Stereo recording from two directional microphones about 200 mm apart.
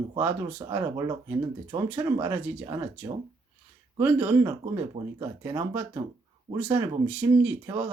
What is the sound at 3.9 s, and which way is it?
Speech, 10° right (ahead or behind).